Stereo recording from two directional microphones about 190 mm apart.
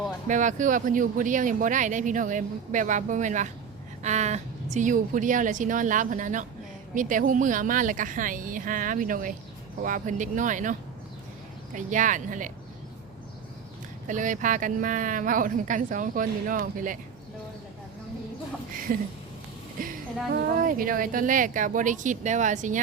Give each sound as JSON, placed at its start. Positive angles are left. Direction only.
{"t": 0.3, "sound": "speech", "side_deg": -40}
{"t": 14.1, "sound": "speech", "side_deg": -40}
{"t": 18.9, "sound": "speech", "side_deg": -45}
{"t": 20.3, "sound": "speech", "side_deg": -45}